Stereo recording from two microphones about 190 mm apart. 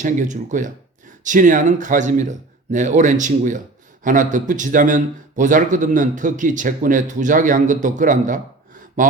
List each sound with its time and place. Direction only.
0.0 s a man's voice: 40° right (ahead or behind)